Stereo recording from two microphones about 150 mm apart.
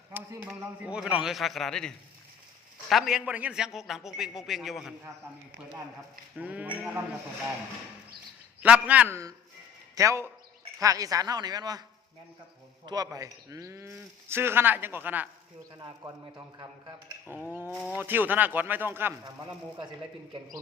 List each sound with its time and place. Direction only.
0.1 s a man's voice: 15° right (ahead or behind)
0.8 s a man's voice: 5° right (ahead or behind)
2.9 s a man's voice: 5° right (ahead or behind)
6.3 s speech: 10° right (ahead or behind)
8.6 s a man's voice: 10° right (ahead or behind); by 11.8 s 25° right (ahead or behind)
12.8 s speech: 25° right (ahead or behind)
17.5 s speech: 15° right (ahead or behind)
19.2 s speech: 30° right (ahead or behind)